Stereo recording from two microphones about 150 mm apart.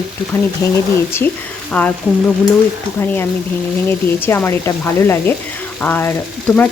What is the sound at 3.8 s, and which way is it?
Speech, 15° left (ahead or behind).